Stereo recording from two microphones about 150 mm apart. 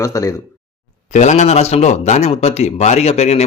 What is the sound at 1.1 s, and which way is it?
Speech, 50° left (ahead or behind).